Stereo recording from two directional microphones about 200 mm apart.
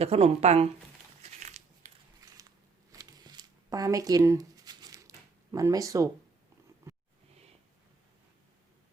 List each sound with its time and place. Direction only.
0.0 s speech: 30° right (ahead or behind)
1.3 s biting: 35° right (ahead or behind)
2.2 s a sound: 20° right (ahead or behind)